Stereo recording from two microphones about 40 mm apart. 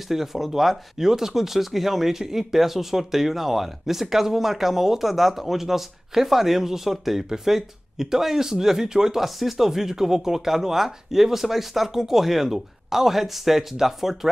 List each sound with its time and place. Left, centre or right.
0.1 s speech: centre
9.2 s speech: centre